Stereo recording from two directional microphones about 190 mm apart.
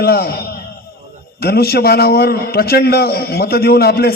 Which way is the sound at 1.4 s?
55° left (ahead or behind).